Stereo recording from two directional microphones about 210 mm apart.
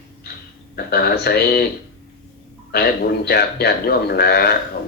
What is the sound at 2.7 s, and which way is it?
A man's voice, 50° left (ahead or behind).